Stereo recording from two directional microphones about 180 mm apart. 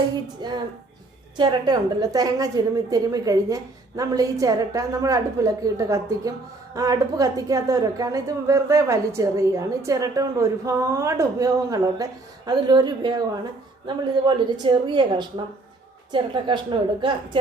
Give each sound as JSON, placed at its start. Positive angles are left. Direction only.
{"t": 0.4, "sound": "a woman's voice", "side_deg": -25}